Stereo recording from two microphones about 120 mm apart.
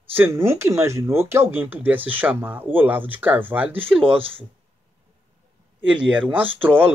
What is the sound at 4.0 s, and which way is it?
Speech, 50° right (ahead or behind).